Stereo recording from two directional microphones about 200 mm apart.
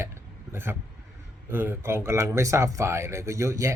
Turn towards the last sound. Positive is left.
turn(degrees=-15)  # may be behind; listen again after turning